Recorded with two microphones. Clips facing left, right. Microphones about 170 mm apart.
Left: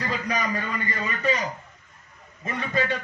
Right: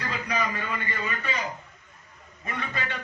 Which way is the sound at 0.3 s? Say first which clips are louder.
Right 1 dB; 40° left (ahead or behind).